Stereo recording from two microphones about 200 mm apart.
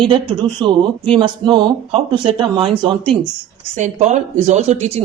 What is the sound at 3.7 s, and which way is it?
Speech, 35° right (ahead or behind).